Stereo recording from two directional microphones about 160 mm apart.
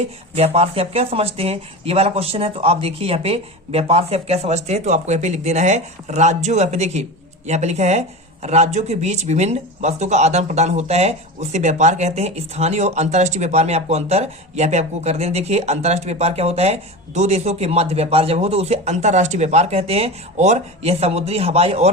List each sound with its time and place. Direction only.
0.3 s speech: 40° right (ahead or behind)